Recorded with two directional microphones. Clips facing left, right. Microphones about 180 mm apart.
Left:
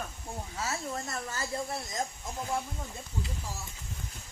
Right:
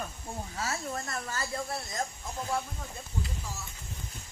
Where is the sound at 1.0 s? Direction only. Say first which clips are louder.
Even; 20° left (ahead or behind).